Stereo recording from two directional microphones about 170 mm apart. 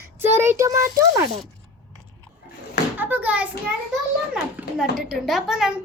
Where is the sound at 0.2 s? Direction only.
15° right (ahead or behind).